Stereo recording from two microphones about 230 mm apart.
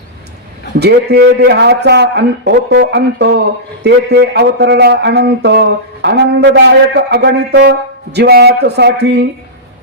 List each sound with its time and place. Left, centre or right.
0.8 s speech: right